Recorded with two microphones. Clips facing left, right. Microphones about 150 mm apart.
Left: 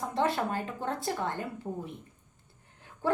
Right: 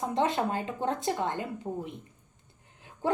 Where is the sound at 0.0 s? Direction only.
20° right (ahead or behind).